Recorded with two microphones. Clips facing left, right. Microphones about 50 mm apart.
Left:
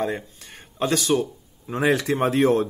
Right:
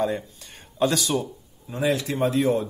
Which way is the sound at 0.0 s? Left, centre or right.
Left.